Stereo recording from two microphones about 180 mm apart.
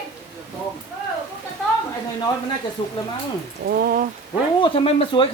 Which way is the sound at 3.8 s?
55° right (ahead or behind).